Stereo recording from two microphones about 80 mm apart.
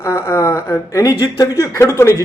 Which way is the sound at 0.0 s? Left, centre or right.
Left.